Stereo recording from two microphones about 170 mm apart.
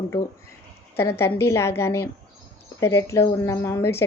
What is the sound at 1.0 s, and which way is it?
Speech, 15° left (ahead or behind).